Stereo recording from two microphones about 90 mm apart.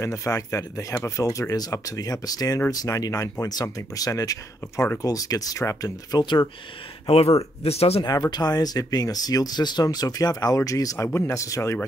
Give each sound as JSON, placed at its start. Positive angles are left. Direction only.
{"t": 0.0, "sound": "speech", "side_deg": 35}
{"t": 6.1, "sound": "speech", "side_deg": 55}
{"t": 8.0, "sound": "speech", "side_deg": 50}